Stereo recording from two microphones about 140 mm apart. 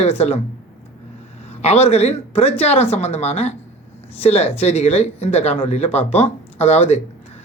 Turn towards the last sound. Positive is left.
turn(degrees=50)  # may be behind; listen again after turning